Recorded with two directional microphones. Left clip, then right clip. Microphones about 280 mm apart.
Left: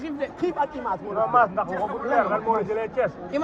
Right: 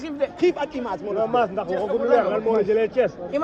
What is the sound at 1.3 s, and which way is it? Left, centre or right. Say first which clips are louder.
Speech: left 4 dB; right.